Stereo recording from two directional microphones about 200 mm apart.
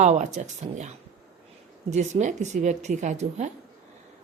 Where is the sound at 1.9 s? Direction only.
35° right (ahead or behind).